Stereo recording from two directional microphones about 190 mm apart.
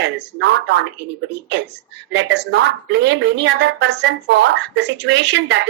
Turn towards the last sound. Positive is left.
turn(degrees=-65)  # may be behind; listen again after turning